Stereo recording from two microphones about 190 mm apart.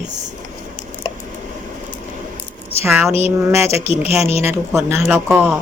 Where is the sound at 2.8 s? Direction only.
15° right (ahead or behind).